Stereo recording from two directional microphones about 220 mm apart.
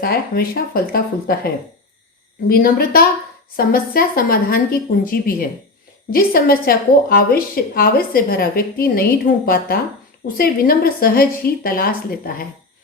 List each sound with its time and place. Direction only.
0.0 s a woman's voice: 45° left (ahead or behind)
2.5 s a woman's voice: 40° left (ahead or behind)